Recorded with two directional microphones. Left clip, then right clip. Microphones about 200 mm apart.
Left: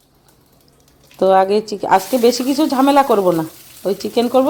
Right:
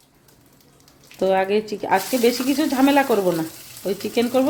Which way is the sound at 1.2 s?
30° left (ahead or behind).